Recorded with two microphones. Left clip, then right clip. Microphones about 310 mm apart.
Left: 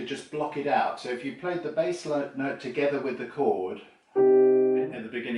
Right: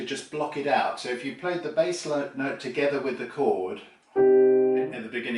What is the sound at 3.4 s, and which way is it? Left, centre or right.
Speech, left.